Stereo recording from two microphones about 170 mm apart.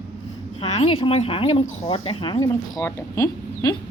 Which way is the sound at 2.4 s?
20° left (ahead or behind).